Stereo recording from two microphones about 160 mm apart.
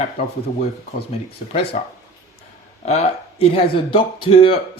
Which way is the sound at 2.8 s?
40° left (ahead or behind).